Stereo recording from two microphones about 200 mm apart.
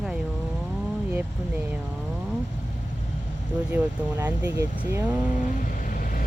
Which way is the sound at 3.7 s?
10° right (ahead or behind).